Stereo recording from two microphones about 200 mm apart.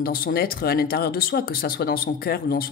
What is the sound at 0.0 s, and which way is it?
Speech, 45° left (ahead or behind).